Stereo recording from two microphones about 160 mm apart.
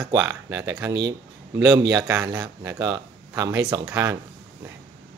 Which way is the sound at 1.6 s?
25° right (ahead or behind).